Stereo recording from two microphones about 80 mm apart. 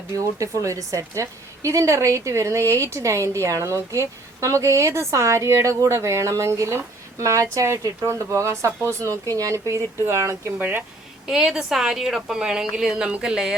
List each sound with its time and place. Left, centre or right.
0.2 s a woman's voice: right
11.3 s a woman's voice: centre